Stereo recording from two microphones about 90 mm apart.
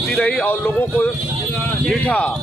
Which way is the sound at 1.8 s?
15° left (ahead or behind).